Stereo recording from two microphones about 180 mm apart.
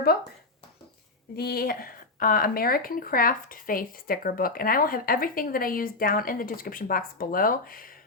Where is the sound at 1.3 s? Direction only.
55° left (ahead or behind).